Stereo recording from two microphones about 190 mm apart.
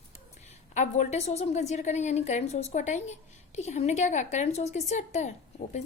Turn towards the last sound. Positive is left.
turn(degrees=35)  # may be behind; listen again after turning